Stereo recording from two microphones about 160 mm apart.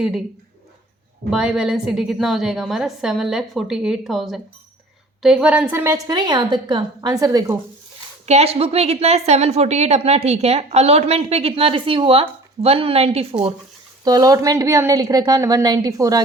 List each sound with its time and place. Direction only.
1.3 s a woman's voice: 5° right (ahead or behind)
6.1 s a woman's voice: 25° right (ahead or behind)
8.3 s a woman's voice: 40° right (ahead or behind)
14.0 s a woman's voice: 20° right (ahead or behind)